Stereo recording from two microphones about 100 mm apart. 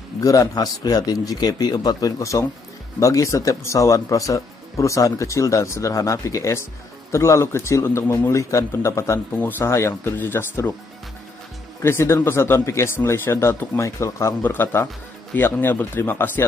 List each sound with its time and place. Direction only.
0.2 s speech: 35° left (ahead or behind)
9.3 s speech: 15° left (ahead or behind)
9.6 s speech: 30° left (ahead or behind)
11.8 s speech: 25° left (ahead or behind)